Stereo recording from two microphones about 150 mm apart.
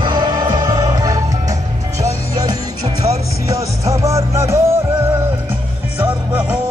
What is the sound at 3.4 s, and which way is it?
Music, 20° right (ahead or behind).